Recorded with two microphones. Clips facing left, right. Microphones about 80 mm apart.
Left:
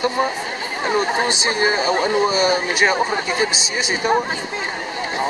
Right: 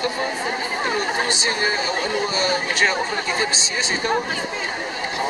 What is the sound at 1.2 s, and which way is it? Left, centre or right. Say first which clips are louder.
Speech: left 3 dB; centre.